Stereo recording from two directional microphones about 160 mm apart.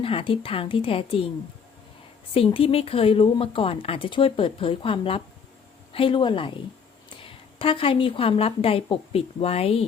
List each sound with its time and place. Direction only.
0.0 s speech: 35° left (ahead or behind)
2.3 s speech: 35° left (ahead or behind)